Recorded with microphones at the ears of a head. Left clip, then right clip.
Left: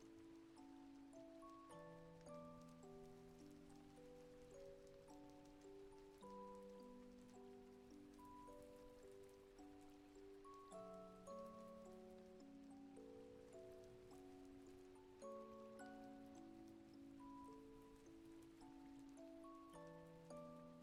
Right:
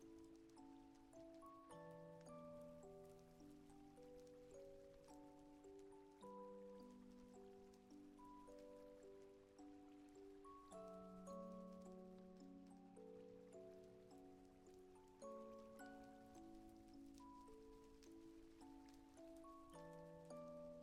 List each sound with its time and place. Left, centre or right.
10.8 s glockenspiel: centre
15.2 s music: centre